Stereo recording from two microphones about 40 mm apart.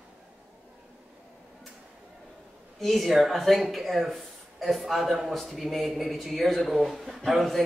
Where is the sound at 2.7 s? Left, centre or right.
Centre.